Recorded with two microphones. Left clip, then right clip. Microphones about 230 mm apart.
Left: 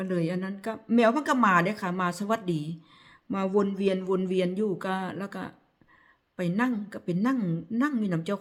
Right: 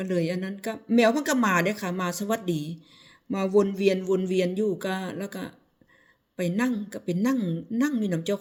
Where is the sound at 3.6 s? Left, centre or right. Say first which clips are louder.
Right 6 dB; left.